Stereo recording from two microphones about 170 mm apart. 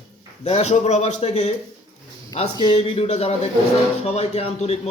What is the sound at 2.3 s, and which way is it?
A man's voice, 30° left (ahead or behind).